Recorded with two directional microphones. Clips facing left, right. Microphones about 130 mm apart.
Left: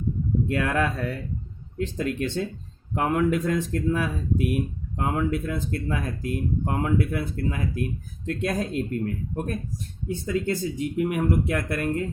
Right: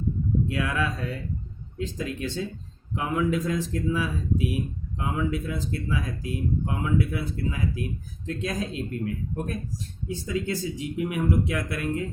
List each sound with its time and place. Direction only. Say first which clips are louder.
0.4 s speech: left 3 dB; 55° left (ahead or behind)